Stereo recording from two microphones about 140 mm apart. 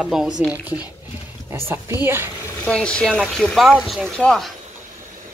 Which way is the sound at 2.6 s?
10° left (ahead or behind).